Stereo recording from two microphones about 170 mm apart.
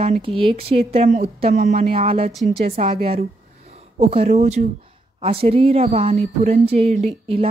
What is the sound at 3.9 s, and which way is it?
A woman's voice, 35° right (ahead or behind).